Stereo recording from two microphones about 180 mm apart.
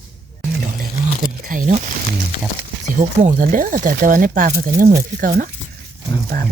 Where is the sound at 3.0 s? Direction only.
50° right (ahead or behind).